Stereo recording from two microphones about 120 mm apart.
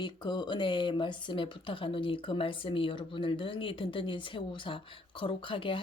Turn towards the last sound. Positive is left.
turn(degrees=45)  # may be behind; listen again after turning